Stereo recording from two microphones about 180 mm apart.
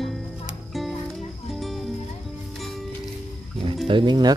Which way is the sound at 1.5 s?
Centre (ahead or behind).